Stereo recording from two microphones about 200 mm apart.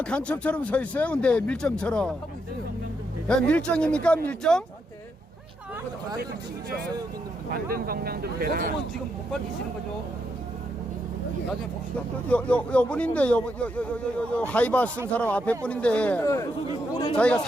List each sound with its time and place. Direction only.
0.0 s speech: 5° left (ahead or behind)
3.2 s speech: 5° left (ahead or behind)
7.7 s speech: 50° right (ahead or behind)
11.9 s speech: 5° left (ahead or behind)